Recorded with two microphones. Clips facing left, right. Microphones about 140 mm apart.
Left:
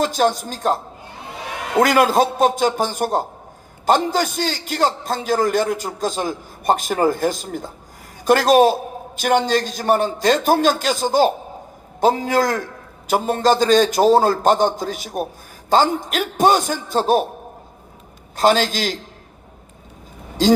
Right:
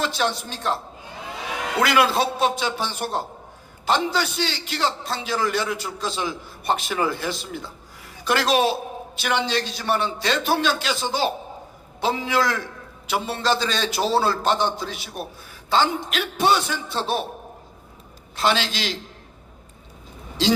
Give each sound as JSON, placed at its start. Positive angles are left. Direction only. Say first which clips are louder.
{"t": 0.0, "sound": "a man's voice", "louder": "left 6 dB", "side_deg": 45}
{"t": 18.3, "sound": "a man's voice", "louder": "left 6 dB", "side_deg": 45}
{"t": 20.4, "sound": "a man's voice", "louder": "left 6 dB", "side_deg": 45}